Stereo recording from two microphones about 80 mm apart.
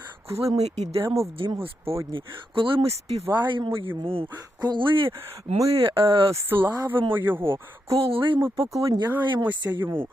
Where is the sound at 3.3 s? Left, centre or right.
Right.